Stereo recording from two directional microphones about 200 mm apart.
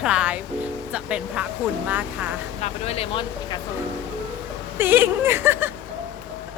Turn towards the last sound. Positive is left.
turn(degrees=-10)  # may be behind; listen again after turning